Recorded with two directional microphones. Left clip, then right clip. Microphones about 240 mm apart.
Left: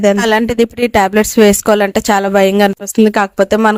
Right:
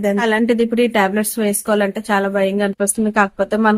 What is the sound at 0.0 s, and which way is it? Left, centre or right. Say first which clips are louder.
A woman's voice: left 6 dB; left.